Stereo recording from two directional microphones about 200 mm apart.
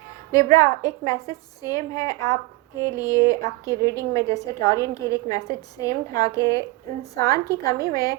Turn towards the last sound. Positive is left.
turn(degrees=15)  # may be behind; listen again after turning